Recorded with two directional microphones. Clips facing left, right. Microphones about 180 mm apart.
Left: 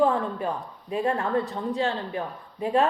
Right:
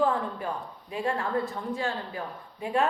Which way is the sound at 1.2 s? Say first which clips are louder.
Left 3 dB; 20° left (ahead or behind).